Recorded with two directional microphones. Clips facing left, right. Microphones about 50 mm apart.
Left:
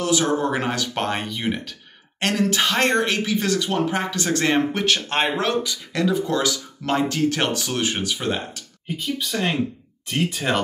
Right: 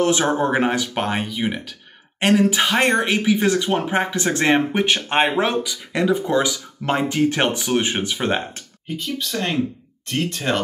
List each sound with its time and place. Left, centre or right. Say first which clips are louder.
0.0 s speech: right 3 dB; right
8.8 s speech: even; centre